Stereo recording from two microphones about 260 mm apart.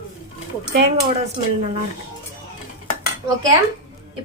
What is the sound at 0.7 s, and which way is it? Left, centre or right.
Speech, right.